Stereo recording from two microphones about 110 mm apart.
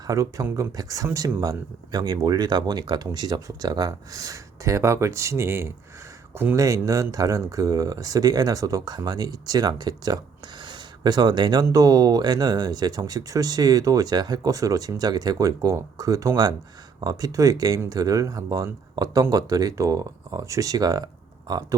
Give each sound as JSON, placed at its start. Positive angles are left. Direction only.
{"t": 0.1, "sound": "speech", "side_deg": -30}
{"t": 6.6, "sound": "speech", "side_deg": -30}
{"t": 10.7, "sound": "a sound", "side_deg": -40}
{"t": 11.6, "sound": "speech", "side_deg": -35}